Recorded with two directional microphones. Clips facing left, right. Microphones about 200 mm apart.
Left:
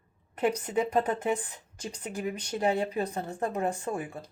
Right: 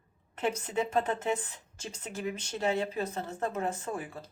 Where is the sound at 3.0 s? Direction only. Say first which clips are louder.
Left 2 dB; 15° left (ahead or behind).